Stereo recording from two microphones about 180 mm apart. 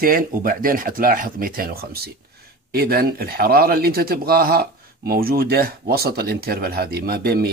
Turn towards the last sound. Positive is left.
turn(degrees=-60)  # may be behind; listen again after turning